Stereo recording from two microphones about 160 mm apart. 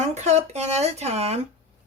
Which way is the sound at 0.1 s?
45° right (ahead or behind).